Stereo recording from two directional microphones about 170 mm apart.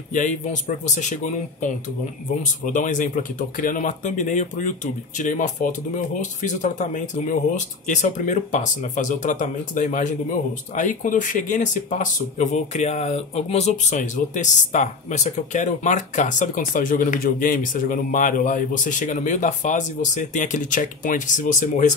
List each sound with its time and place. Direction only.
0.1 s speech: 45° left (ahead or behind)